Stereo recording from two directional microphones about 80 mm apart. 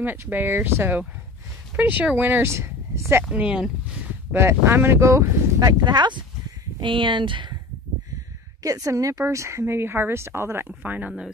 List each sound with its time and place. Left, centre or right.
0.0 s speech: right
3.3 s speech: centre
4.3 s speech: right
5.6 s speech: right
6.8 s speech: right
8.6 s a woman's voice: right
10.7 s speech: centre